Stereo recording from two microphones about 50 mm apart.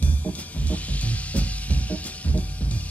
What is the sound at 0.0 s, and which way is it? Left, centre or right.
Music, left.